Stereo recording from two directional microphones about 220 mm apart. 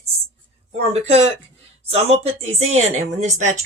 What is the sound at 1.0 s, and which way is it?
Speech, 30° right (ahead or behind).